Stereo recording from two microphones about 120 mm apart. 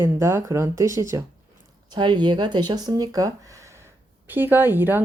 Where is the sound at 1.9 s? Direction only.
40° right (ahead or behind).